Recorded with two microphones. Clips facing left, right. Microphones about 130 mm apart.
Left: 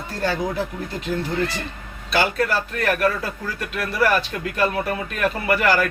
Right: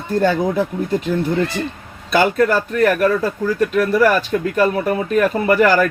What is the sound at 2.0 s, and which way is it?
Speech, 45° right (ahead or behind).